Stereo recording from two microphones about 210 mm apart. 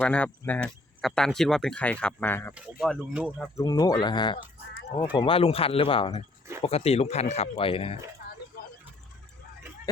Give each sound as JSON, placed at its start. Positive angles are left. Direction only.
{"t": 0.0, "sound": "speech", "side_deg": 5}
{"t": 2.8, "sound": "speech", "side_deg": -5}
{"t": 3.6, "sound": "speech", "side_deg": 20}